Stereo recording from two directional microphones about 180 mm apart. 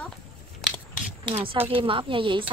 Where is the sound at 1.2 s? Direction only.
30° right (ahead or behind).